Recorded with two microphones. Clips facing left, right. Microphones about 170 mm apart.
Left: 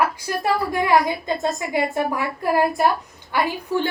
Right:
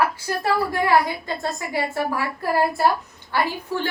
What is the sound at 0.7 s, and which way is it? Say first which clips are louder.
A woman's voice: left 2 dB; 15° left (ahead or behind).